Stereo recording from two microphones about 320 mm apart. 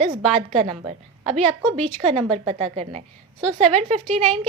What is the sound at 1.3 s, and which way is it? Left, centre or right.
Speech, centre.